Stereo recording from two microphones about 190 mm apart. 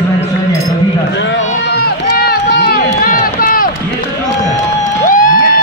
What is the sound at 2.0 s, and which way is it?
Run, 55° left (ahead or behind).